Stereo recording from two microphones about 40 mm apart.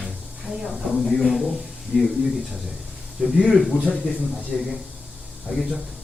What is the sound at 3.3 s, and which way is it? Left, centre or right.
Speech, centre.